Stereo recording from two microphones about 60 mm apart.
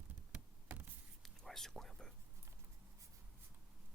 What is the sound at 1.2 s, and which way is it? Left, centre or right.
Whispering, centre.